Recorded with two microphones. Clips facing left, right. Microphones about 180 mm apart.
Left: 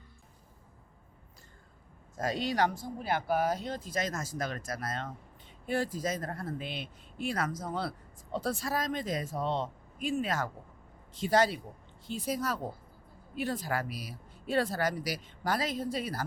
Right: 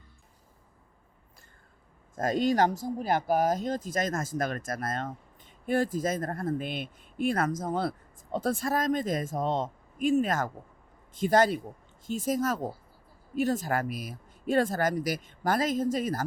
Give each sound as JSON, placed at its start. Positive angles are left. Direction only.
{"t": 2.1, "sound": "speech", "side_deg": -45}